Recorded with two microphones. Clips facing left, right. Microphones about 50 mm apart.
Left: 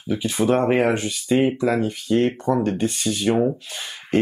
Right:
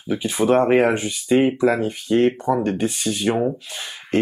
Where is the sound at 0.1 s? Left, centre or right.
Centre.